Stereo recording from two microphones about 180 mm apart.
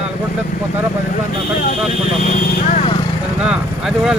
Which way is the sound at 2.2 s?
40° left (ahead or behind).